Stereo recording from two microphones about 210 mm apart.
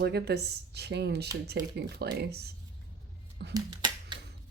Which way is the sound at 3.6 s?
20° right (ahead or behind).